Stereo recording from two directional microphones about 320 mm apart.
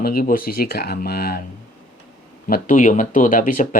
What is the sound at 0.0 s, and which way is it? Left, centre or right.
Speech, left.